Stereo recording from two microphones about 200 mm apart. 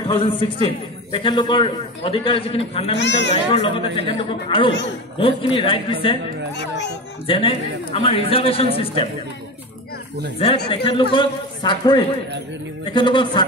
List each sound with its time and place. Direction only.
0.0 s a man's voice: 25° left (ahead or behind)
3.0 s speech: 60° left (ahead or behind)
3.5 s a man's voice: 25° left (ahead or behind)
7.2 s a man's voice: 25° left (ahead or behind)
10.7 s a man's voice: 25° left (ahead or behind)